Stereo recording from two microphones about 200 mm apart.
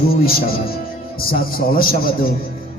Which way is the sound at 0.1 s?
50° left (ahead or behind).